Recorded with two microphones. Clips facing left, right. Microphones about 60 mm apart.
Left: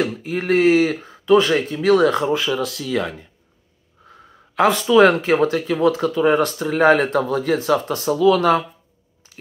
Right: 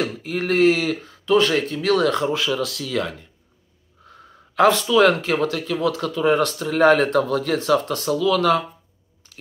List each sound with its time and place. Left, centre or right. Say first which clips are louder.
0.0 s speech: left 2 dB; centre